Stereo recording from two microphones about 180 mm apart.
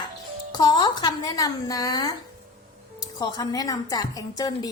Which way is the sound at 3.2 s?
20° left (ahead or behind).